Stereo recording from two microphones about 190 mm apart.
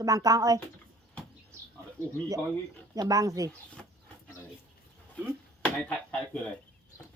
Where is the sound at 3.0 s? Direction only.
20° right (ahead or behind).